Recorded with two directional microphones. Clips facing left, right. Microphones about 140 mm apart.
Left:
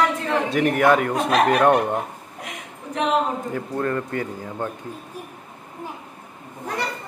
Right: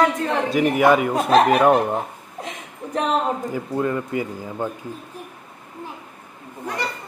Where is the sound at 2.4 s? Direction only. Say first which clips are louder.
Right 2 dB; 35° right (ahead or behind).